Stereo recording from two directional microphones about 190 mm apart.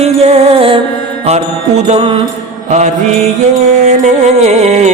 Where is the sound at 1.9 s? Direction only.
30° right (ahead or behind).